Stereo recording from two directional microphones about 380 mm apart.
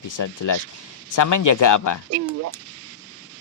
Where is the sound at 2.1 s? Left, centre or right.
Right.